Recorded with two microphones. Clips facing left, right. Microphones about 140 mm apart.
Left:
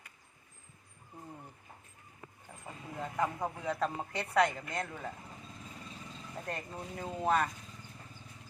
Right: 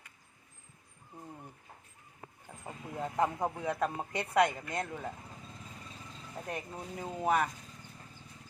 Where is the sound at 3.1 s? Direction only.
20° right (ahead or behind).